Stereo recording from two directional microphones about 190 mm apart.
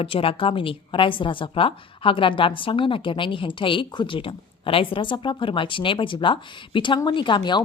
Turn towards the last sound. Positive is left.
turn(degrees=25)  # may be behind; listen again after turning